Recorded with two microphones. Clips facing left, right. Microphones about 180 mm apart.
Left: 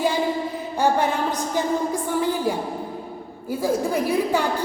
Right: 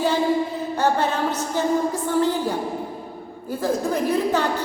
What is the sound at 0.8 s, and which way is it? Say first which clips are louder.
A woman's voice: left 1 dB; 15° left (ahead or behind).